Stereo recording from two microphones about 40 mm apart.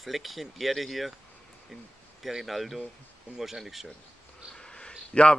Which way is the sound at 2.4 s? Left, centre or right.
Centre.